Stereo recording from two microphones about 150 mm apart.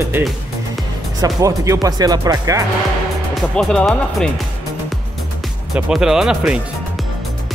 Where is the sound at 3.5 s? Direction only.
5° left (ahead or behind).